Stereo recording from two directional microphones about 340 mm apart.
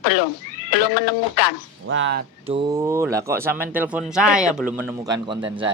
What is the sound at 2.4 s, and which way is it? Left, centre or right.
Speech, centre.